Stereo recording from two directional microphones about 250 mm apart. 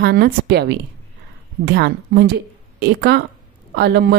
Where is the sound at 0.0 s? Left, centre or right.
Right.